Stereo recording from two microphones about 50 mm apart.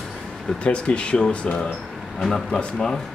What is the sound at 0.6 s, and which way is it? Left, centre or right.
Speech, left.